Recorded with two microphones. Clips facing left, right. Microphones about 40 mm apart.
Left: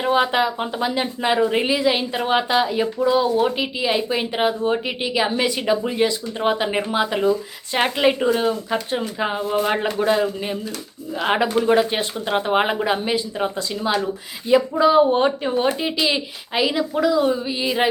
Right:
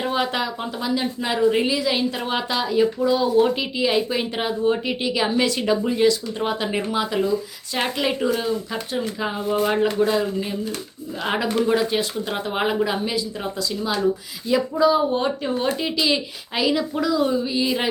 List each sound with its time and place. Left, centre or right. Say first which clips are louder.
0.0 s speech: left 5 dB; centre